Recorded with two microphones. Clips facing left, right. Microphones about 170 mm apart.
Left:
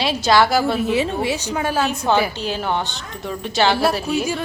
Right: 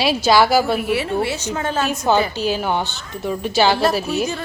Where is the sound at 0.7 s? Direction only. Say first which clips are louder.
Even; 20° left (ahead or behind).